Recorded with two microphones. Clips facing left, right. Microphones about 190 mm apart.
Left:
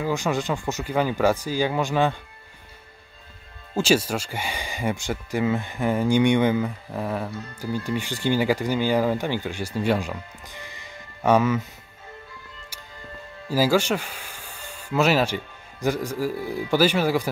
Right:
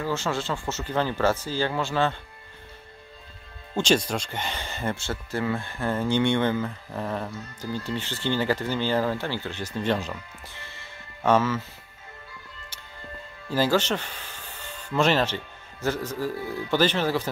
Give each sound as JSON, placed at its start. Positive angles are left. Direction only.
{"t": 0.0, "sound": "speech", "side_deg": 15}
{"t": 3.7, "sound": "speech", "side_deg": 5}
{"t": 13.5, "sound": "speech", "side_deg": 10}